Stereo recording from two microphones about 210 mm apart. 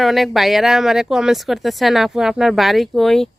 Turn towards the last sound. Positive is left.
turn(degrees=0)  # may be behind; listen again after turning